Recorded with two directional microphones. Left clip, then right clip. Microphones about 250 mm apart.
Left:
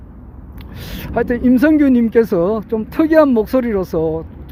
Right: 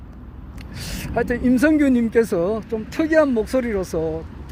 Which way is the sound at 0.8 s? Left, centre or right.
Centre.